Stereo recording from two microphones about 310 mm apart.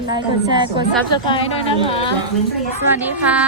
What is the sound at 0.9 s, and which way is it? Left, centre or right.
Speech, centre.